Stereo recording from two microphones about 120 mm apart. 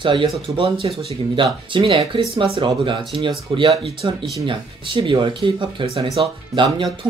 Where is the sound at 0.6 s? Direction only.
55° right (ahead or behind).